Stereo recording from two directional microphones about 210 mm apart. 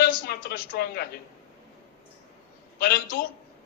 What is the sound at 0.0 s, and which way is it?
A woman's voice, 45° left (ahead or behind).